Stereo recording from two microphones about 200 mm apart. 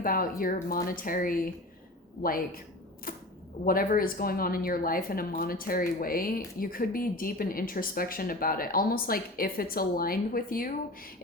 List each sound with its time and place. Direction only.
0.0 s a woman's voice: 45° left (ahead or behind)
3.1 s camera: 45° left (ahead or behind)
3.6 s a woman's voice: 45° left (ahead or behind)